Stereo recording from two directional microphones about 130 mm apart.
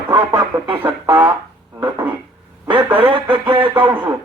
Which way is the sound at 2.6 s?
40° right (ahead or behind).